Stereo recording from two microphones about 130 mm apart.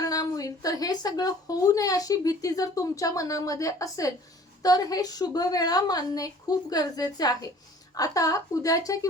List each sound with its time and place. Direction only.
0.0 s a woman's voice: 30° left (ahead or behind)